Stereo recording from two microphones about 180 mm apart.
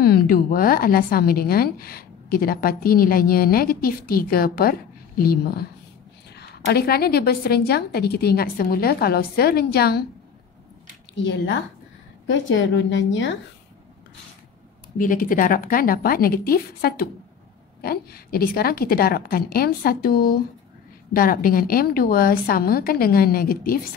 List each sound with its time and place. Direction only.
0.0 s a woman's voice: 55° left (ahead or behind)
11.1 s a woman's voice: 85° left
15.0 s a woman's voice: 50° left (ahead or behind)